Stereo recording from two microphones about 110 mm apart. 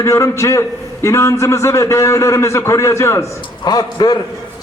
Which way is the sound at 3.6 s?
40° left (ahead or behind).